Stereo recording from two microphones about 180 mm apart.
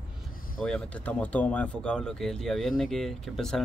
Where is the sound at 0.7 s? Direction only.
5° left (ahead or behind).